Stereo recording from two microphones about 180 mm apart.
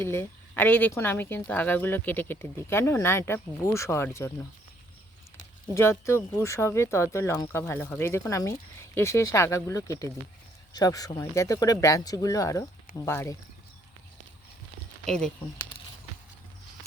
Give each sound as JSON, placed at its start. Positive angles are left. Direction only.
{"t": 0.0, "sound": "speech", "side_deg": 15}
{"t": 5.7, "sound": "speech", "side_deg": 15}
{"t": 15.0, "sound": "speech", "side_deg": 5}